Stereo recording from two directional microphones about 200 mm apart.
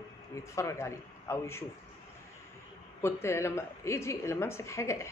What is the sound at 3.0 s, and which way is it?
A woman's voice, 15° left (ahead or behind).